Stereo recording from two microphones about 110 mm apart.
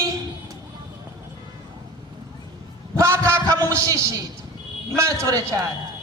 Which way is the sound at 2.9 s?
25° right (ahead or behind).